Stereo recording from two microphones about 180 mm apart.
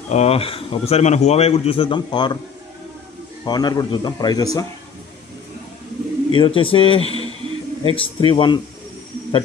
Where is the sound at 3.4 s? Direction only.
20° left (ahead or behind).